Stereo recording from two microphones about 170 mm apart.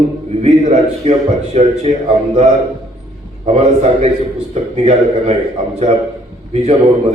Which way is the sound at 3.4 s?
40° right (ahead or behind).